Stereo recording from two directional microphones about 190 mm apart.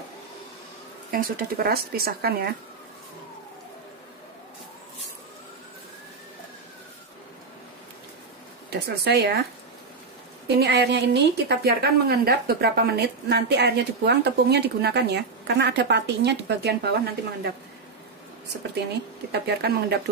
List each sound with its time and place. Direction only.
1.1 s speech: 50° right (ahead or behind)
8.6 s speech: 60° right (ahead or behind)
10.6 s a woman's voice: 60° right (ahead or behind)
19.3 s a woman's voice: 60° right (ahead or behind)